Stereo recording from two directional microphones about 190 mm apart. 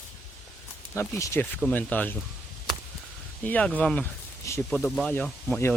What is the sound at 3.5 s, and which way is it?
Speech, 10° left (ahead or behind).